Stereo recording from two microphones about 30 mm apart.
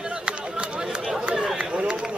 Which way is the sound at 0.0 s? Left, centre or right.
Right.